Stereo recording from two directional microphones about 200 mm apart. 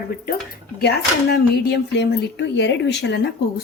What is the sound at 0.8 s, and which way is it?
Speech, 55° left (ahead or behind).